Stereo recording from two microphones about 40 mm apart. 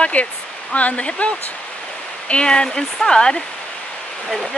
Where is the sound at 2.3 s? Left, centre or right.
Left.